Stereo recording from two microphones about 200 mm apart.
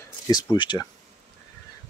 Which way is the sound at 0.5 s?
25° left (ahead or behind).